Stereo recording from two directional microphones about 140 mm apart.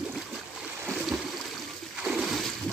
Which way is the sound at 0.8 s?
5° right (ahead or behind).